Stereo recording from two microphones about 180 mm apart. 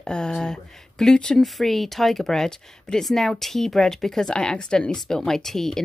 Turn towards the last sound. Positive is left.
turn(degrees=0)  # may be behind; listen again after turning